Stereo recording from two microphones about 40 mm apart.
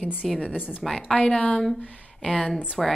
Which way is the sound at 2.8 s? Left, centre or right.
Centre.